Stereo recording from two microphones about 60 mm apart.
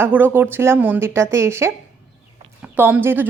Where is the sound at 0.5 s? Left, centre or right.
Right.